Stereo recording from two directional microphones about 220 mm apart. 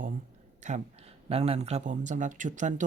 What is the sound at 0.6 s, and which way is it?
Speech, 30° right (ahead or behind).